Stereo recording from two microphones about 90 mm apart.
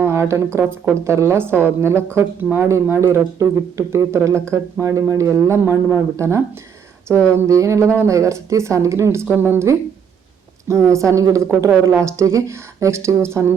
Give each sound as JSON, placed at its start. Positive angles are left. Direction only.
{"t": 0.0, "sound": "a woman's voice", "side_deg": -30}
{"t": 10.7, "sound": "speech", "side_deg": -30}